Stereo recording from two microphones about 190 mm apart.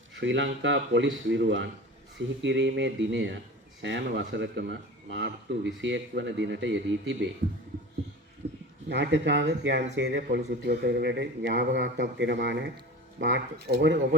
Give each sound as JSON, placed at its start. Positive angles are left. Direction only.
{"t": 0.1, "sound": "speech", "side_deg": -75}
{"t": 8.9, "sound": "speech", "side_deg": -65}